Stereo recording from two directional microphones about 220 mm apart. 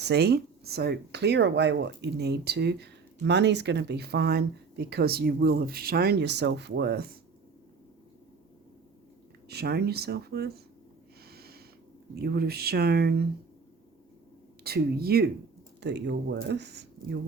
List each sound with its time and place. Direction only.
0.0 s speech: 50° right (ahead or behind)
9.5 s speech: 45° right (ahead or behind)
11.3 s snort: 45° right (ahead or behind)
12.2 s speech: 45° right (ahead or behind)
14.6 s speech: 45° right (ahead or behind)